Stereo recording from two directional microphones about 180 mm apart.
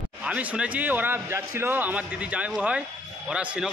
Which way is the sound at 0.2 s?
5° right (ahead or behind).